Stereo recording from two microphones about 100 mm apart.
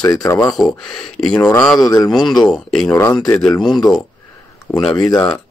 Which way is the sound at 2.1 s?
5° left (ahead or behind).